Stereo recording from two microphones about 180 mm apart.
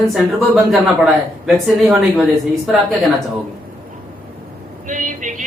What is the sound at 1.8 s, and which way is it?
Speech, centre (ahead or behind).